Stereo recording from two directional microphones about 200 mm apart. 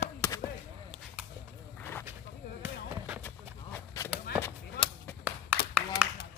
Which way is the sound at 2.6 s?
10° right (ahead or behind).